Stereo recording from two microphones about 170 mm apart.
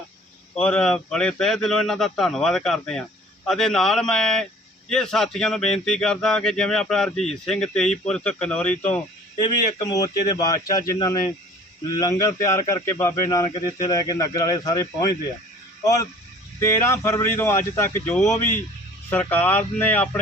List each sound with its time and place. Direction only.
0.5 s speech: 5° left (ahead or behind)
9.7 s speech: 20° left (ahead or behind)